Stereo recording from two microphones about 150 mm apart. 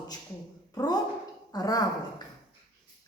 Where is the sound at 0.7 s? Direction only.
25° left (ahead or behind).